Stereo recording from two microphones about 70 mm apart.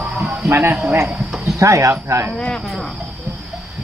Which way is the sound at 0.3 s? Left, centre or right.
Right.